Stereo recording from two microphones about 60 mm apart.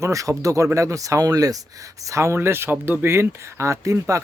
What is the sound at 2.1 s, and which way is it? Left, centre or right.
Speech, right.